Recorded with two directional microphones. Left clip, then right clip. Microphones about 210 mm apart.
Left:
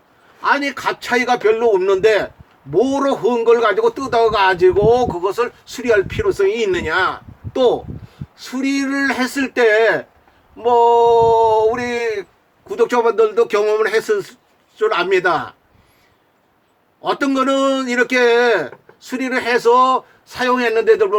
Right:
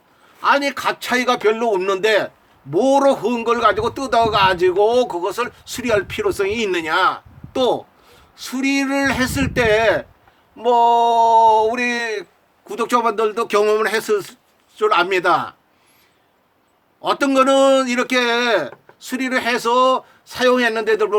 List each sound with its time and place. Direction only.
0.4 s a man's voice: 50° right (ahead or behind)
17.0 s a man's voice: 50° right (ahead or behind)